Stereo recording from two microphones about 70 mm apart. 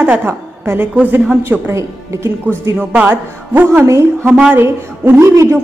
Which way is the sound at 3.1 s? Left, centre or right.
Right.